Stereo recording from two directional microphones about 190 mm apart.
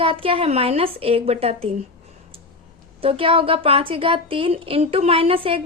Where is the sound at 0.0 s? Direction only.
30° right (ahead or behind).